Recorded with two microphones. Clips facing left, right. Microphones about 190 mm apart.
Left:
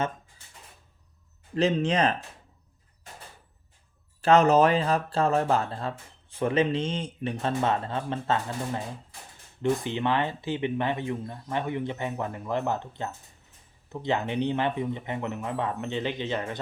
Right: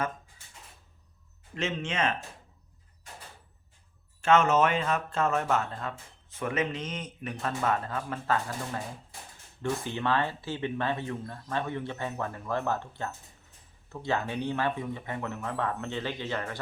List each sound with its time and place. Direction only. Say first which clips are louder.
1.5 s speech: left 8 dB; 35° left (ahead or behind)
4.2 s speech: left 4 dB; 35° left (ahead or behind); by 16.6 s 20° left (ahead or behind)